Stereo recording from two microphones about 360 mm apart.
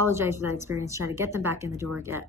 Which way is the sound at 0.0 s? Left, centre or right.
Centre.